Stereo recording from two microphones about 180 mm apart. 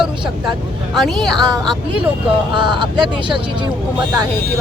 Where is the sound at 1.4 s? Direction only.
25° right (ahead or behind).